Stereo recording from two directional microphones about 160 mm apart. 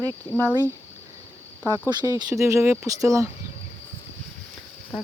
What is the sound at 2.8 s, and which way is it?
Speech, 20° right (ahead or behind).